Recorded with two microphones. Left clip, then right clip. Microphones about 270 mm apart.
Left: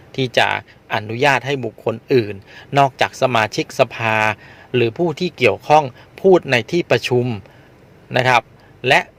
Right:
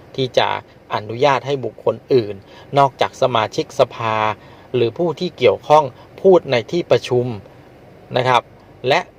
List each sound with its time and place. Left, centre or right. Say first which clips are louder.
0.1 s a man's voice: left 1 dB; left